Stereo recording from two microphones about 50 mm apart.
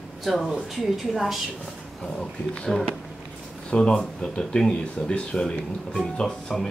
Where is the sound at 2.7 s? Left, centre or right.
Centre.